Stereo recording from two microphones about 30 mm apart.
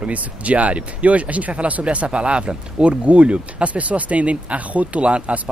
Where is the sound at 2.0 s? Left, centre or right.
Right.